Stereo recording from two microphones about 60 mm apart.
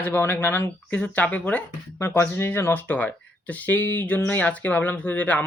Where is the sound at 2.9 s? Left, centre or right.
Left.